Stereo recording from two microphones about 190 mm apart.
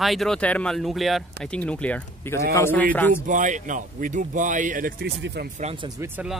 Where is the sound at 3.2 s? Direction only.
40° right (ahead or behind).